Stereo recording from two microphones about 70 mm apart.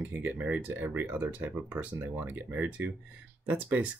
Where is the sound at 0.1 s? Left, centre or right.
Right.